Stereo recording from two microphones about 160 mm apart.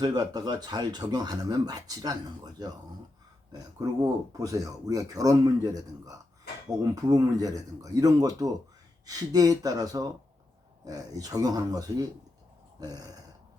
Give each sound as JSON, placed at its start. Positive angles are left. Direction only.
{"t": 0.0, "sound": "speech", "side_deg": -25}